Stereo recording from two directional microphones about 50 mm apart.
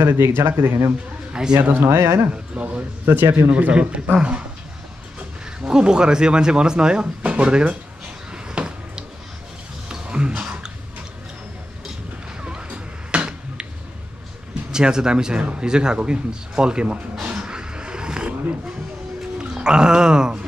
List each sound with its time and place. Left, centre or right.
0.0 s speech: right
1.3 s speech: centre
1.6 s speech: right
2.3 s speech: right
3.1 s speech: right
3.4 s speech: right
5.6 s speech: centre
8.3 s a sound: centre
12.4 s a sound: right
14.5 s speech: centre
17.1 s a sound: centre
19.3 s speech: centre